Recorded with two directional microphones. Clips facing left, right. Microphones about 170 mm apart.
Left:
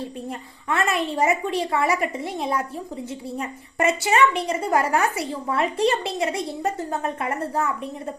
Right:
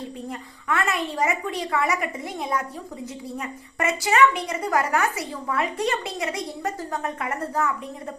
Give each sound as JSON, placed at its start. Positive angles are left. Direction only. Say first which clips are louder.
{"t": 0.3, "sound": "a woman's voice", "louder": "right 1 dB", "side_deg": 25}